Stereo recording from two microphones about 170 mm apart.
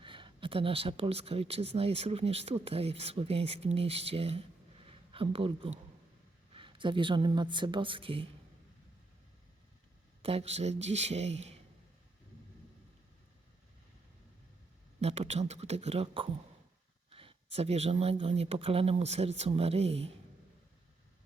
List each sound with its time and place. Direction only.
0.0 s speech: 30° right (ahead or behind)
10.2 s speech: 35° right (ahead or behind)
15.0 s speech: 40° right (ahead or behind)